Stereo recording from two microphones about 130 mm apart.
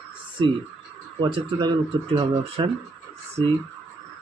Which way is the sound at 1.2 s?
35° right (ahead or behind).